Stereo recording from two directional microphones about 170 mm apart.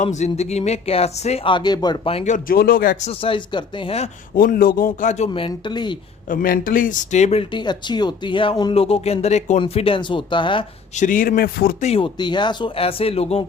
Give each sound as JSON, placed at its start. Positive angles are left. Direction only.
{"t": 0.0, "sound": "speech", "side_deg": 45}
{"t": 3.1, "sound": "speech", "side_deg": 30}
{"t": 4.4, "sound": "a man's voice", "side_deg": 55}
{"t": 6.2, "sound": "speech", "side_deg": 55}
{"t": 10.9, "sound": "a man's voice", "side_deg": 50}
{"t": 11.8, "sound": "speech", "side_deg": 35}